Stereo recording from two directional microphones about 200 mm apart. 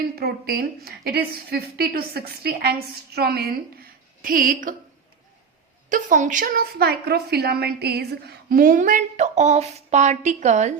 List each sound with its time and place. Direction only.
0.0 s a woman's voice: 50° right (ahead or behind)
5.9 s a woman's voice: 40° right (ahead or behind)